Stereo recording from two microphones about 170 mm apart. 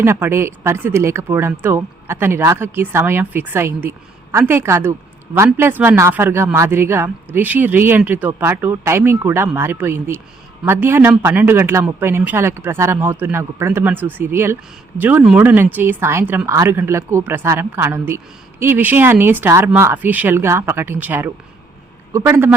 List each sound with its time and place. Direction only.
0.0 s speech: 15° right (ahead or behind)